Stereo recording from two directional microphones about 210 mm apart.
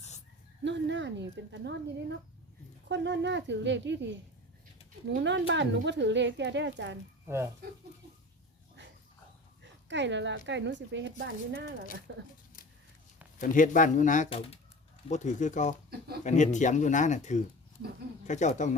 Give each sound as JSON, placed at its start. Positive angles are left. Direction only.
{"t": 0.6, "sound": "speech", "side_deg": -55}
{"t": 7.3, "sound": "speech", "side_deg": -10}
{"t": 9.9, "sound": "speech", "side_deg": -60}
{"t": 12.6, "sound": "a sound", "side_deg": 40}
{"t": 13.4, "sound": "speech", "side_deg": 40}